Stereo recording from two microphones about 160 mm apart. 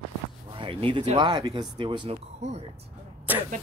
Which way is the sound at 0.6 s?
35° right (ahead or behind).